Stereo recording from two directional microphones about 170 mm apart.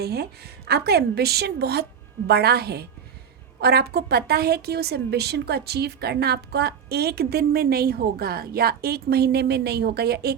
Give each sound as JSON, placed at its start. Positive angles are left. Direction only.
{"t": 0.0, "sound": "a woman's voice", "side_deg": -70}